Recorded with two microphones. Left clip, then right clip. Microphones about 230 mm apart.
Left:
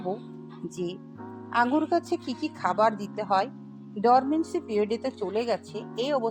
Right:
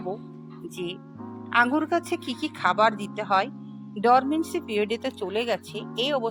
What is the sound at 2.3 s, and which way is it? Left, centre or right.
Speech, left.